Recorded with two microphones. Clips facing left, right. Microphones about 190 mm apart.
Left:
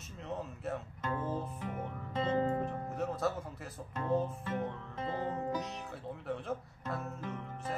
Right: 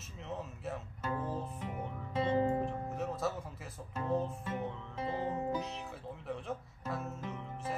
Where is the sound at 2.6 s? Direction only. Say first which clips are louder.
Left 1 dB; centre (ahead or behind).